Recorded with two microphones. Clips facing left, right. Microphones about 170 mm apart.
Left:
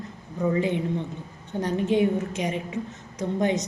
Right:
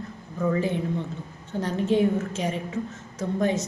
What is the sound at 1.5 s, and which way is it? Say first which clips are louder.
A woman's voice: even; 15° left (ahead or behind).